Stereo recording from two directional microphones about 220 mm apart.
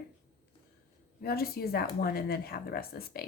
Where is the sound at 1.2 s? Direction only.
45° left (ahead or behind).